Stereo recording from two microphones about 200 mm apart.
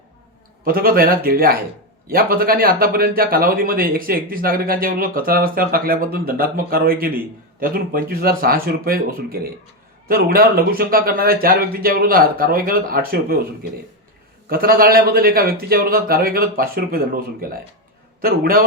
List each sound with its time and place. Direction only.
0.6 s a man's voice: 50° right (ahead or behind)